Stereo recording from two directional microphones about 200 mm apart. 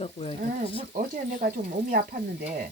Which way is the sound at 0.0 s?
30° left (ahead or behind).